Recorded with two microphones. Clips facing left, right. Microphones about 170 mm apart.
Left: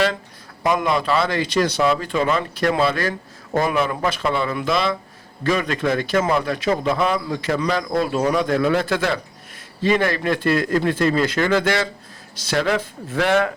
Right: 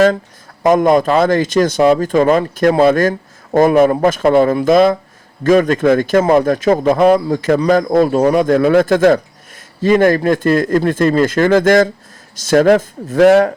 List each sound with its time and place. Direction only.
0.6 s speech: 45° right (ahead or behind)